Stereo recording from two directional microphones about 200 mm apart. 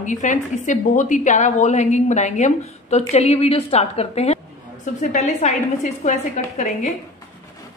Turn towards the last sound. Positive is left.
turn(degrees=35)  # may be behind; listen again after turning